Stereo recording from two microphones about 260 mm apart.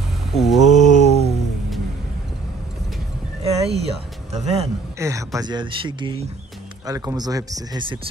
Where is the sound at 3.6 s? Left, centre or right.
Right.